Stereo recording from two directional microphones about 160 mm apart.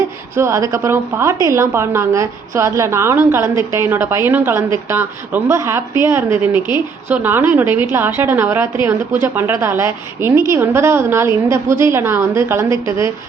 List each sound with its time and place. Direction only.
0.3 s a woman's voice: 20° right (ahead or behind)